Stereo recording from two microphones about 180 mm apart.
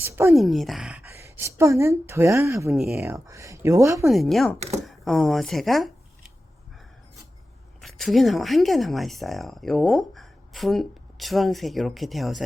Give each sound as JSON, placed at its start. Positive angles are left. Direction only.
{"t": 0.0, "sound": "speech", "side_deg": -15}
{"t": 0.3, "sound": "speech", "side_deg": 0}
{"t": 1.1, "sound": "a woman's voice", "side_deg": -15}
{"t": 2.7, "sound": "speech", "side_deg": 0}
{"t": 3.0, "sound": "speech", "side_deg": -15}
{"t": 4.1, "sound": "speech", "side_deg": 0}
{"t": 7.8, "sound": "speech", "side_deg": 0}